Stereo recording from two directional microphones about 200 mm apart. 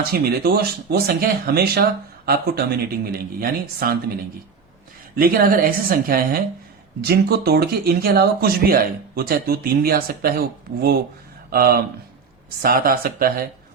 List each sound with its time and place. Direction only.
0.1 s speech: 50° right (ahead or behind)
5.1 s speech: 45° right (ahead or behind)